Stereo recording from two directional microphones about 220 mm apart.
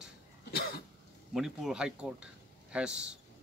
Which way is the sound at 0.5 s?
45° left (ahead or behind).